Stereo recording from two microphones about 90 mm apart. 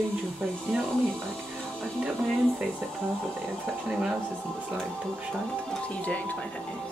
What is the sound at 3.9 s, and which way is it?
Speech, 5° right (ahead or behind).